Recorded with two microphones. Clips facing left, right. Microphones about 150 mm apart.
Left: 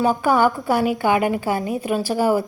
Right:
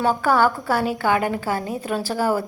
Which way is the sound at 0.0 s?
15° left (ahead or behind).